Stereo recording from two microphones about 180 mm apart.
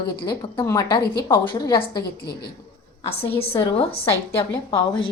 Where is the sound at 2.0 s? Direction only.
60° left (ahead or behind).